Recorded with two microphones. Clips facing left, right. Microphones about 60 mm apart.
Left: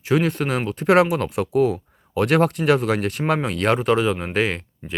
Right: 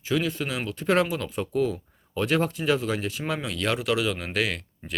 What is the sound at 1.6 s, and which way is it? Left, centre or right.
Speech, left.